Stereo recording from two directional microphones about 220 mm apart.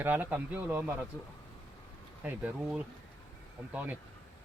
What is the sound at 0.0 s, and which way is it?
Speech, 10° right (ahead or behind).